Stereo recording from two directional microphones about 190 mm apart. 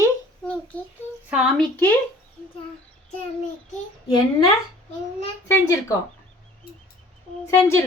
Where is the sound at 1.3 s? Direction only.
5° right (ahead or behind).